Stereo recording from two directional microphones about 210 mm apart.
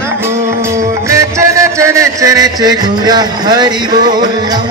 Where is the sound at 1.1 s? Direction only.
15° right (ahead or behind).